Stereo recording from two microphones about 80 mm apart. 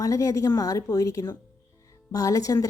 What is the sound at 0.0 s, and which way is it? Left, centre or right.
A woman's voice, left.